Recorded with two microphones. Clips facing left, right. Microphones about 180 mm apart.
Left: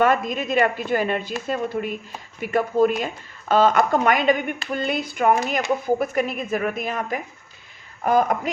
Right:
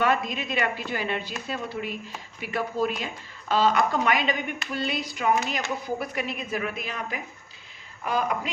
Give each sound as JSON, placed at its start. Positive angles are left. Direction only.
{"t": 0.0, "sound": "speech", "side_deg": 45}